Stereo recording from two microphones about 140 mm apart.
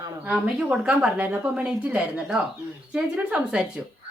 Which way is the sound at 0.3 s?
10° right (ahead or behind).